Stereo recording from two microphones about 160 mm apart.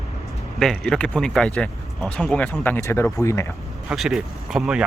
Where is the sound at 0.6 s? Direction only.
Centre (ahead or behind).